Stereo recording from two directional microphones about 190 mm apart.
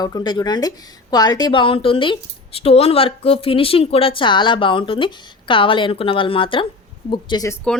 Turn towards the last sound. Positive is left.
turn(degrees=20)  # may be behind; listen again after turning